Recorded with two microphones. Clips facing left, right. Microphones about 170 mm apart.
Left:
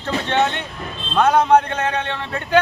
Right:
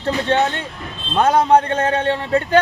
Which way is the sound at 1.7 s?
35° right (ahead or behind).